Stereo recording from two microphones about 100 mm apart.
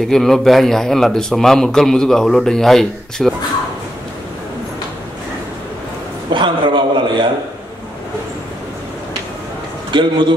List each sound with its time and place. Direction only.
0.0 s a man's voice: 5° left (ahead or behind)
6.3 s a sound: 55° right (ahead or behind)
9.8 s a man's voice: 50° right (ahead or behind)